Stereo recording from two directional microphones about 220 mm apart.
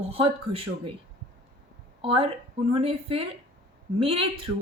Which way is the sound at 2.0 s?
25° right (ahead or behind).